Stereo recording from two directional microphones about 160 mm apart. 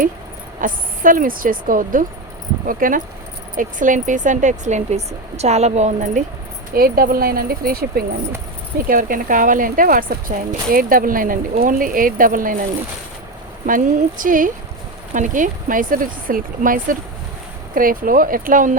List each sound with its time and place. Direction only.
0.6 s speech: 55° right (ahead or behind)
6.7 s speech: 65° right (ahead or behind)
13.7 s speech: 55° right (ahead or behind)